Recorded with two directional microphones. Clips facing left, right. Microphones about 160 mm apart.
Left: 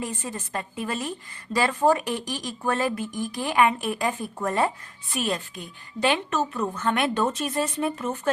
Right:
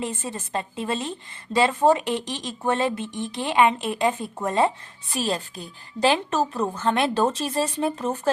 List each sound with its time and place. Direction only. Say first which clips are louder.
0.0 s a woman's voice: right 2 dB; 25° right (ahead or behind)